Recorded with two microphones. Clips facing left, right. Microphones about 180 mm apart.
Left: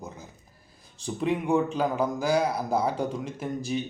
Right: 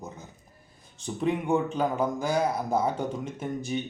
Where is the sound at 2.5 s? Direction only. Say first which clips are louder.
Even; 35° left (ahead or behind).